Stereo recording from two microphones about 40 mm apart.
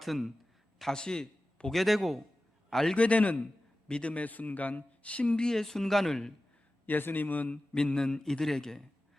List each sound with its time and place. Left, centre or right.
0.0 s a man's voice: centre
0.9 s a man's voice: centre
1.7 s a man's voice: centre
2.9 s a man's voice: left
3.8 s a man's voice: left
4.1 s a man's voice: left
5.5 s a man's voice: centre
6.8 s a man's voice: left
7.4 s a man's voice: left